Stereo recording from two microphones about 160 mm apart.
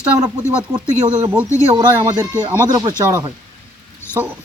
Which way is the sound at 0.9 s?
50° right (ahead or behind).